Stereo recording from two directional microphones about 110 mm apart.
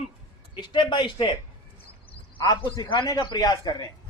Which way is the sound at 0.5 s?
45° left (ahead or behind).